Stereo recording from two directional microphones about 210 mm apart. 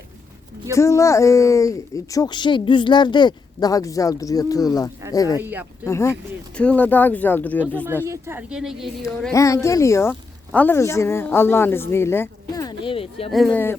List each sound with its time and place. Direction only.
0.7 s speech: 15° left (ahead or behind)
5.4 s speech: 10° right (ahead or behind)
5.8 s speech: 15° left (ahead or behind)
8.0 s a woman's voice: 15° right (ahead or behind)
9.3 s speech: 15° left (ahead or behind)
13.3 s speech: 5° left (ahead or behind)